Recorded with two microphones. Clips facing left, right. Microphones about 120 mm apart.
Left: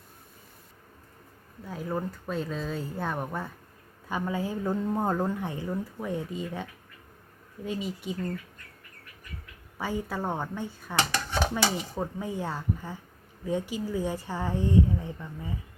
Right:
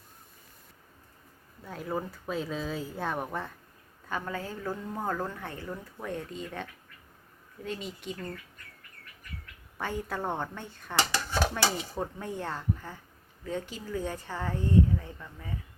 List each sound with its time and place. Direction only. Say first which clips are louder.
1.6 s speech: left 2 dB; centre (ahead or behind)
4.1 s speech: left 5 dB; 10° left (ahead or behind)
9.7 s speech: left 2 dB; 5° left (ahead or behind)